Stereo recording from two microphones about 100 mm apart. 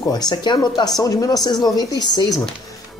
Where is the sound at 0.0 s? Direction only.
45° left (ahead or behind).